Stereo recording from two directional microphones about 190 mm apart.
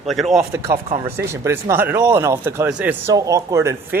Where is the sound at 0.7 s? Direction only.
30° right (ahead or behind).